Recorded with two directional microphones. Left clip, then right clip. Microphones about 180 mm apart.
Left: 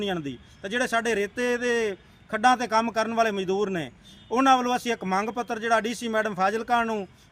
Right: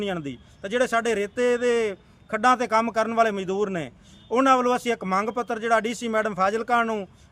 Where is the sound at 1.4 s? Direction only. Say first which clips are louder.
Right 4 dB; 25° right (ahead or behind).